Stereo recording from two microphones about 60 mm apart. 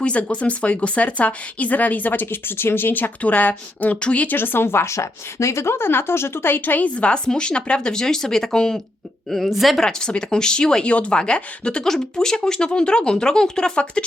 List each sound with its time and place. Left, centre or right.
0.0 s speech: left
4.4 s a woman's voice: left; by 9.8 s centre
9.8 s speech: centre